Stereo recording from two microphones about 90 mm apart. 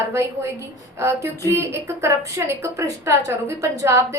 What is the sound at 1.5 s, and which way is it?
A woman's voice, 30° right (ahead or behind).